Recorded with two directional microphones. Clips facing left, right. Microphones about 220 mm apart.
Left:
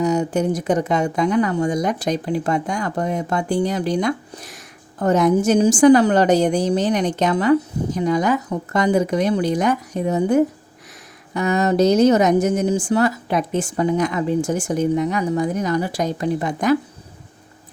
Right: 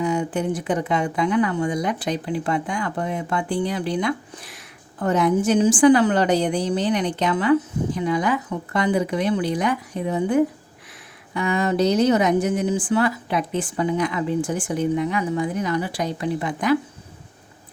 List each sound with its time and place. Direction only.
0.0 s speech: 40° left (ahead or behind)